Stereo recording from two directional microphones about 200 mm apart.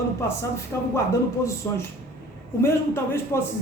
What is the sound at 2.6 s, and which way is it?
Speech, 10° left (ahead or behind).